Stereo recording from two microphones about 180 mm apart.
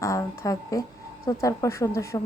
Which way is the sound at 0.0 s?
15° left (ahead or behind).